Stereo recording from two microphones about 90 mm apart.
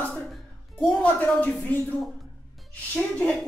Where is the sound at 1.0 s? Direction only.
15° left (ahead or behind).